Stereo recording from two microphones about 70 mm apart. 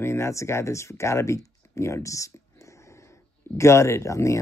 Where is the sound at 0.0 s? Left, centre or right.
Left.